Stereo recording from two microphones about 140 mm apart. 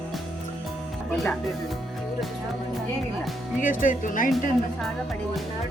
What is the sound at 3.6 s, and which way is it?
Speech, 75° left (ahead or behind).